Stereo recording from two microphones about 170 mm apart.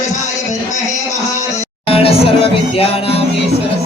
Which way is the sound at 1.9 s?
35° left (ahead or behind).